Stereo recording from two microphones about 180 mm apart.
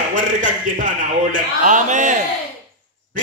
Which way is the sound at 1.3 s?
45° right (ahead or behind).